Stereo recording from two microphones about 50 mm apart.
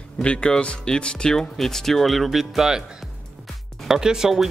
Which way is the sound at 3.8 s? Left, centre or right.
Centre.